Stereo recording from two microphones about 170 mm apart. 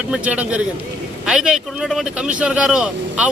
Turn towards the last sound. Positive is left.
turn(degrees=-5)  # may be behind; listen again after turning